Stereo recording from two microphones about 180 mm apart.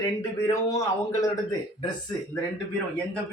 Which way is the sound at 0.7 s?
15° left (ahead or behind).